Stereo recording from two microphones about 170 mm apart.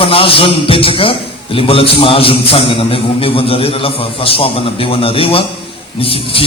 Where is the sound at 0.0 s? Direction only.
35° left (ahead or behind).